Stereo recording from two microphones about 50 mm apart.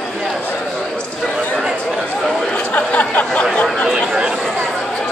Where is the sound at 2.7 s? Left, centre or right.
Left.